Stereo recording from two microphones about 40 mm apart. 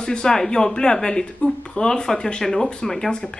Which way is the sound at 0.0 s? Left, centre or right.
Centre.